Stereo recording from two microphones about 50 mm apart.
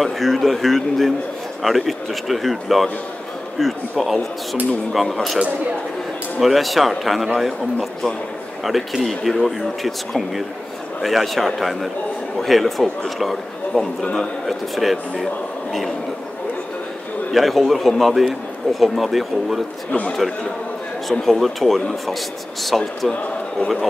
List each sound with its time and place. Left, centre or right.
0.0 s a man's voice: centre
6.4 s a man's voice: centre
8.6 s a man's voice: centre
17.3 s a man's voice: centre
19.9 s a man's voice: left
21.1 s a man's voice: centre